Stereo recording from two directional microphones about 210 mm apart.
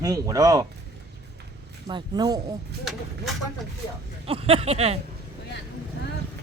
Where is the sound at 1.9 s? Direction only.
20° right (ahead or behind).